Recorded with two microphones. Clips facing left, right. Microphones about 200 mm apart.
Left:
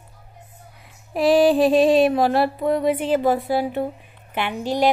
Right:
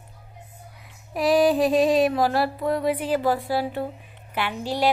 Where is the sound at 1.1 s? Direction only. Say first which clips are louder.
Left 3 dB; 30° left (ahead or behind).